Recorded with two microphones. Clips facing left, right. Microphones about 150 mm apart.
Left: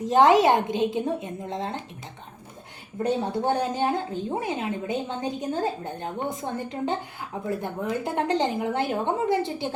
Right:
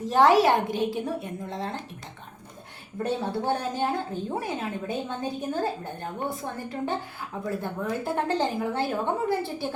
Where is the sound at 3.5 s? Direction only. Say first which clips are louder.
Left 3 dB; 15° left (ahead or behind).